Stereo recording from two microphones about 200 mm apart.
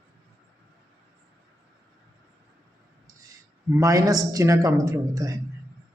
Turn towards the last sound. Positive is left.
turn(degrees=-15)  # may be behind; listen again after turning